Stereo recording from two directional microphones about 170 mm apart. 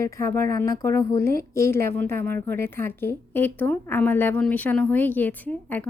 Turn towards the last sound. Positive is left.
turn(degrees=10)  # may be behind; listen again after turning